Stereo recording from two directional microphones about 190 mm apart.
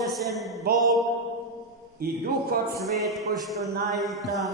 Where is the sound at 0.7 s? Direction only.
55° right (ahead or behind).